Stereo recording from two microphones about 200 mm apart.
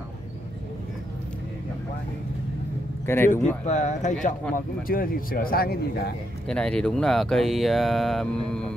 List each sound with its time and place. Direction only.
3.1 s speech: 10° left (ahead or behind)
3.6 s speech: 35° left (ahead or behind); by 6.1 s 50° left (ahead or behind)
6.4 s speech: 5° left (ahead or behind)